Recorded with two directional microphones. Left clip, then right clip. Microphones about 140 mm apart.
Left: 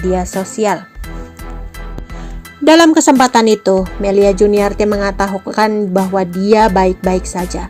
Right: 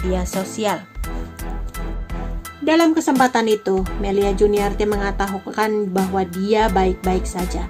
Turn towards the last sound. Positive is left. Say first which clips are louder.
# left 5 dB
turn(degrees=40)  # may be behind; listen again after turning